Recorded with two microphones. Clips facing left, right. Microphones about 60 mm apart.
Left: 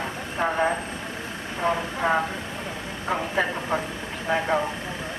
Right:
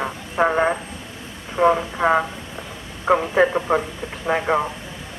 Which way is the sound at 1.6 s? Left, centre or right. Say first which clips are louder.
Right 7 dB; right.